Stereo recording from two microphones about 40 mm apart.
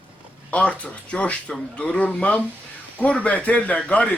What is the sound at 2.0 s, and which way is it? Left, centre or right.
Speech, left.